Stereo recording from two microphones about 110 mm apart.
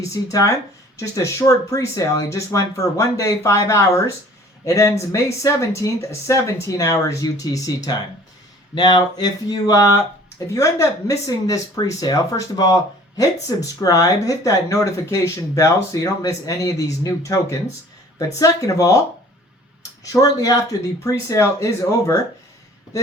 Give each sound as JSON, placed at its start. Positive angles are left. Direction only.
{"t": 0.1, "sound": "speech", "side_deg": 30}
{"t": 20.1, "sound": "speech", "side_deg": 35}